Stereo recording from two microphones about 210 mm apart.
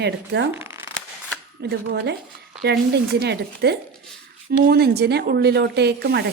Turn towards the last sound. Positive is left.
turn(degrees=-50)  # may be behind; listen again after turning